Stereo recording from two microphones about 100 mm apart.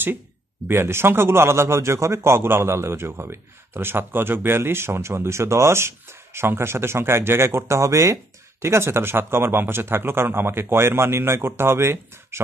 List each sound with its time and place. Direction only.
0.7 s speech: 25° right (ahead or behind)